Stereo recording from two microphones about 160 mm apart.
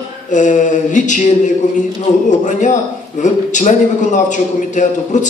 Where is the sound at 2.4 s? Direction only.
50° left (ahead or behind).